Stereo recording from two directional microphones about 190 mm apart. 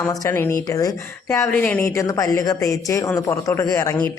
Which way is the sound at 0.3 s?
15° left (ahead or behind).